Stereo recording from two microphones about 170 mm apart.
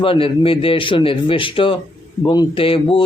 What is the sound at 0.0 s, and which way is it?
Speech, 30° left (ahead or behind).